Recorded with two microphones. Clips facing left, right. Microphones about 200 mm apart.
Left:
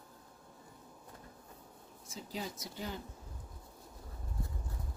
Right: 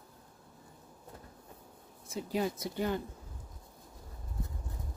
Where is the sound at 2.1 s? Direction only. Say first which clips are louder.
Right 9 dB; 60° right (ahead or behind).